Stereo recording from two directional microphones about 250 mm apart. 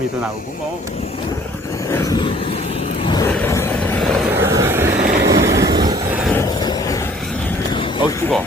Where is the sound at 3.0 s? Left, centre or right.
Centre.